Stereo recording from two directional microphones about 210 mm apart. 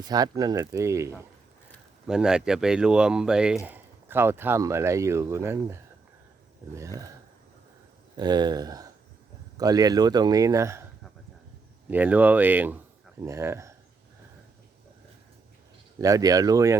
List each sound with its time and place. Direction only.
0.0 s speech: 20° right (ahead or behind)
8.1 s speech: 20° right (ahead or behind)
11.9 s speech: 10° right (ahead or behind)
16.0 s speech: 15° right (ahead or behind)